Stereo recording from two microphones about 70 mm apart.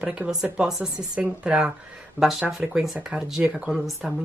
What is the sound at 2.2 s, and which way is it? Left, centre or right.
Speech, left.